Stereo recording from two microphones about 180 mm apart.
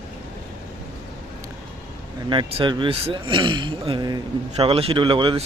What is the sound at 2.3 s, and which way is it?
A man's voice, 25° right (ahead or behind).